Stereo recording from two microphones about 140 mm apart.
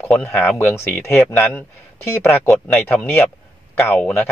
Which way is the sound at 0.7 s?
20° left (ahead or behind).